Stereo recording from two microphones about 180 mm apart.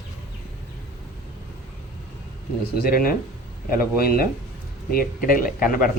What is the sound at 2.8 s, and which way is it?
Speech, 55° left (ahead or behind).